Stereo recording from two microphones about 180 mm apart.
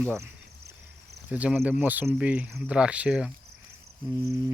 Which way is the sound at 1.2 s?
10° right (ahead or behind).